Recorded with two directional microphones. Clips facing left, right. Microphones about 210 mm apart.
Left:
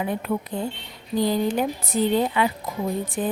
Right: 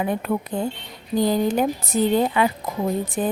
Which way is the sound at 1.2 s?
45° right (ahead or behind).